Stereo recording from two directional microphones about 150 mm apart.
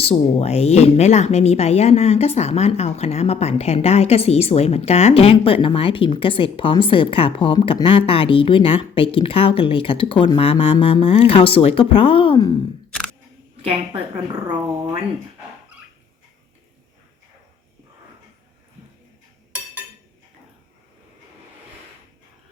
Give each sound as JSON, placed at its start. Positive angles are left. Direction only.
{"t": 0.0, "sound": "speech", "side_deg": 45}
{"t": 13.6, "sound": "a woman's voice", "side_deg": -40}